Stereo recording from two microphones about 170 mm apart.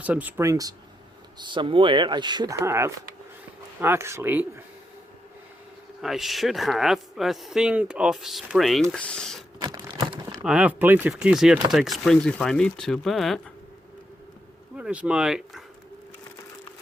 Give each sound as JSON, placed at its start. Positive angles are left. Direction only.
{"t": 0.0, "sound": "speech", "side_deg": -10}
{"t": 6.0, "sound": "speech", "side_deg": 0}
{"t": 9.6, "sound": "crumpling", "side_deg": -20}
{"t": 10.4, "sound": "speech", "side_deg": -5}
{"t": 14.8, "sound": "speech", "side_deg": -5}